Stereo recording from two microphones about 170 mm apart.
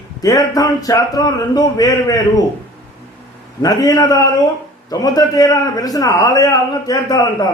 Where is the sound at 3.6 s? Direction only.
20° left (ahead or behind).